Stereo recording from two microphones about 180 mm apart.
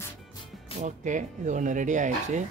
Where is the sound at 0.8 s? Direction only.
45° right (ahead or behind).